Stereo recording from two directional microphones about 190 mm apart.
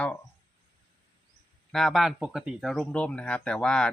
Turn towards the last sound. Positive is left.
turn(degrees=5)  # may be behind; listen again after turning